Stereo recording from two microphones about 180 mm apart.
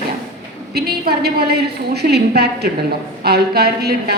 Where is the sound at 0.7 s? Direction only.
60° right (ahead or behind).